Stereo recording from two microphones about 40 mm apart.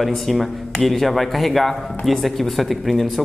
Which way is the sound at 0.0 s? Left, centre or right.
Centre.